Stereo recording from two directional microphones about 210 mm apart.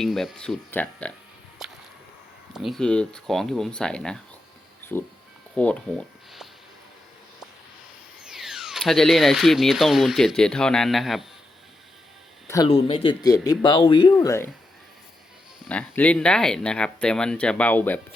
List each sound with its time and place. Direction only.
0.0 s speech: centre (ahead or behind)
1.6 s whip: centre (ahead or behind)
2.5 s speech: centre (ahead or behind)
5.5 s speech: 5° left (ahead or behind)
8.2 s speech: 5° right (ahead or behind)
12.6 s speech: 25° left (ahead or behind)
15.7 s speech: 5° left (ahead or behind)